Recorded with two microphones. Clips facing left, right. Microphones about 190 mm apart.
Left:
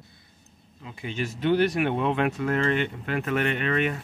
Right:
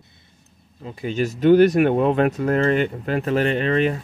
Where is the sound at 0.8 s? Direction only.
40° right (ahead or behind).